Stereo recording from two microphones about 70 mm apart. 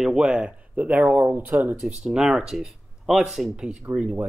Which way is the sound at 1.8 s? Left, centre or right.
Centre.